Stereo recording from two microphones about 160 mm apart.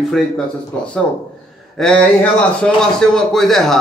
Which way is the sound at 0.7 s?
10° left (ahead or behind).